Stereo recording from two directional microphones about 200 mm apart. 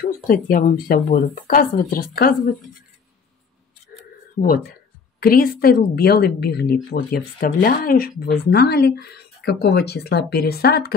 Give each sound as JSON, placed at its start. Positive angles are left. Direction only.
{"t": 0.0, "sound": "speech", "side_deg": 45}
{"t": 5.2, "sound": "speech", "side_deg": 45}